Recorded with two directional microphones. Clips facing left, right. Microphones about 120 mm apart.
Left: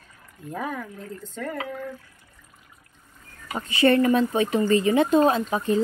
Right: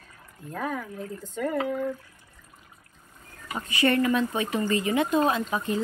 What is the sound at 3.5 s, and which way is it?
Speech, 30° left (ahead or behind).